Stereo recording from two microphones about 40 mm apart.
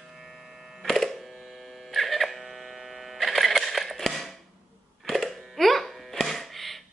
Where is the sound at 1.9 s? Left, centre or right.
Centre.